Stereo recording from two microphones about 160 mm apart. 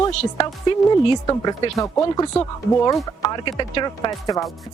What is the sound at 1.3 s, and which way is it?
Speech, 25° left (ahead or behind).